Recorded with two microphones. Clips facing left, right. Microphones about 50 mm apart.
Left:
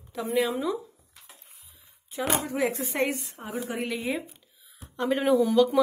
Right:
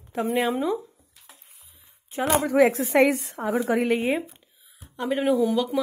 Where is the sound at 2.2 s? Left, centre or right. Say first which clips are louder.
Right 8 dB; right.